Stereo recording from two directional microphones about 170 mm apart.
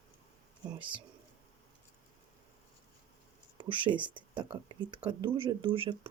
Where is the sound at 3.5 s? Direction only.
30° right (ahead or behind).